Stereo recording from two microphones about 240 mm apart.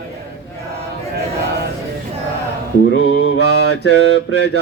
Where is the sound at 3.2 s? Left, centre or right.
Left.